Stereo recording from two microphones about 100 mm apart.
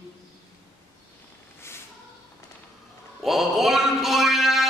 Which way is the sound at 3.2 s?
Centre (ahead or behind).